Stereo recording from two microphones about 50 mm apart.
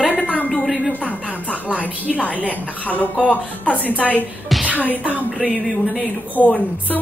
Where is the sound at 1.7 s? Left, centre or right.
Left.